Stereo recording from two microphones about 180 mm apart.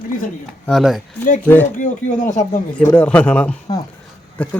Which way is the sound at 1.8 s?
45° left (ahead or behind).